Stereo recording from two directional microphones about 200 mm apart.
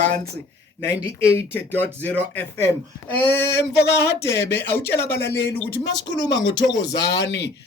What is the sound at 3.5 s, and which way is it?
Speech, 60° left (ahead or behind).